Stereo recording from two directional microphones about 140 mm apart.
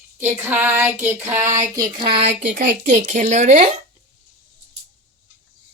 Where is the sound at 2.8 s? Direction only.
60° right (ahead or behind).